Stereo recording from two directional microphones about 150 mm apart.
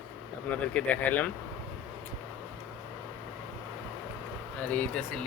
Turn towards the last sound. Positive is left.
turn(degrees=10)  # may be behind; listen again after turning